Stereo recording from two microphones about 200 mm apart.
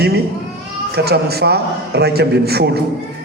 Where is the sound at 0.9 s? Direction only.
55° right (ahead or behind).